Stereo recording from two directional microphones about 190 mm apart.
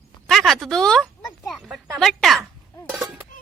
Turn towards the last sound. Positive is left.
turn(degrees=-5)  # may be behind; listen again after turning